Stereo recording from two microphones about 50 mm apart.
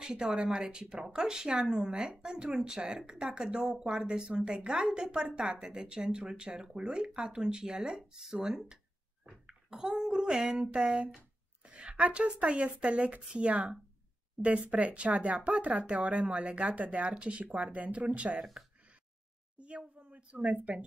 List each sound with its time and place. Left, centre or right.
0.0 s a child's voice: centre
10.2 s a woman's voice: centre
18.4 s speech: centre
19.6 s a sound: right